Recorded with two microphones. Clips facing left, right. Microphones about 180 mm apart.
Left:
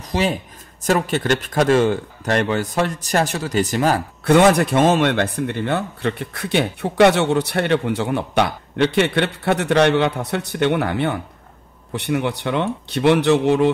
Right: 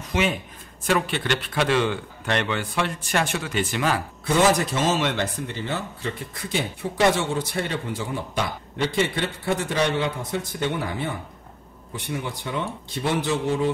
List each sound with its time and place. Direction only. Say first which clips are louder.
0.0 s speech: left 3 dB; 35° left (ahead or behind)
4.2 s a man's voice: left 7 dB; 65° left (ahead or behind)